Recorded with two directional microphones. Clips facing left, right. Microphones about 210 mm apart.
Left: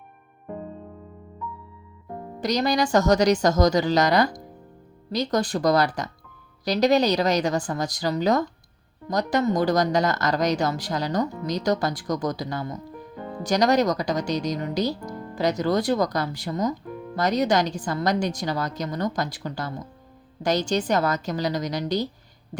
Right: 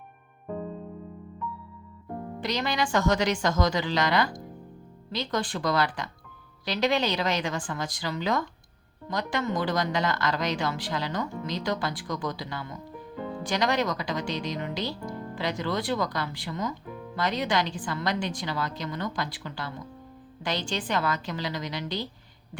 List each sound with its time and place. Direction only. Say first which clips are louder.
2.4 s a woman's voice: left 7 dB; 40° left (ahead or behind)